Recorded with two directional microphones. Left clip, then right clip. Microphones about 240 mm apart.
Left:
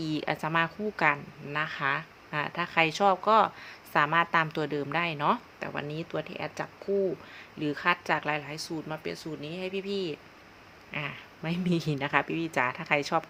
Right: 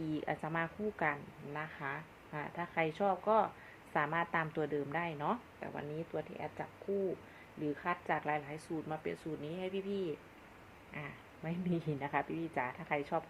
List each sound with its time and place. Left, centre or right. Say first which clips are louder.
0.1 s a woman's voice: left 10 dB; left